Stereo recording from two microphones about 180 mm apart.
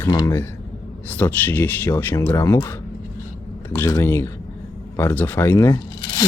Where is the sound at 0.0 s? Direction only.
20° left (ahead or behind).